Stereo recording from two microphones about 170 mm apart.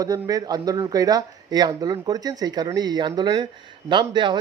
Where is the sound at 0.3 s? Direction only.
20° right (ahead or behind).